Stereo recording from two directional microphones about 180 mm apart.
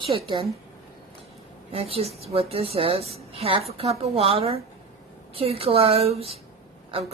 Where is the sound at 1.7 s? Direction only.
35° right (ahead or behind).